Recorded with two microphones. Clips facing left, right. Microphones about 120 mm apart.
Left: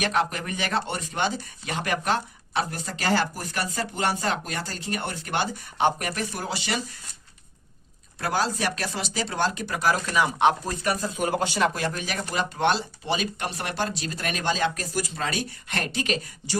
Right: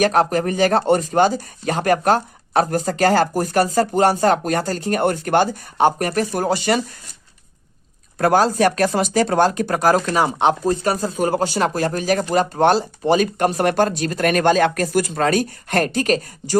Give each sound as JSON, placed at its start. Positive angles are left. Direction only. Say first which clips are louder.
{"t": 0.0, "sound": "speech", "louder": "right 9 dB", "side_deg": -40}
{"t": 8.2, "sound": "speech", "louder": "right 11 dB", "side_deg": -50}